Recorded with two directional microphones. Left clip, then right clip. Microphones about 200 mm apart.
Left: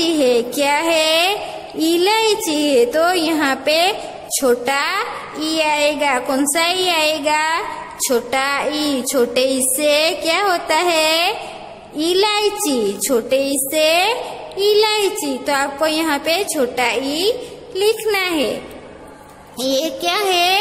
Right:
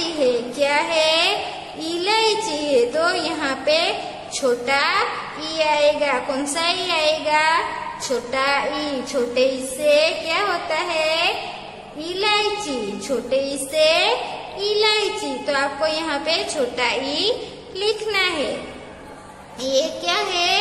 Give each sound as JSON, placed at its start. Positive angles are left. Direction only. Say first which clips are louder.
{"t": 0.0, "sound": "a sound", "louder": "left 5 dB", "side_deg": 45}
{"t": 1.8, "sound": "a woman's voice", "louder": "left 5 dB", "side_deg": 45}
{"t": 19.6, "sound": "a woman's voice", "louder": "left 2 dB", "side_deg": 45}